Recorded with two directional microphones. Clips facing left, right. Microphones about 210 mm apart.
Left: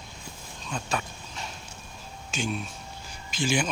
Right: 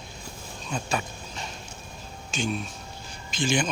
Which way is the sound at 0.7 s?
Centre (ahead or behind).